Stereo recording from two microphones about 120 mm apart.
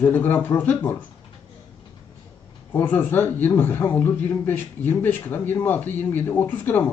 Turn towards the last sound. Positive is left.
turn(degrees=15)  # may be behind; listen again after turning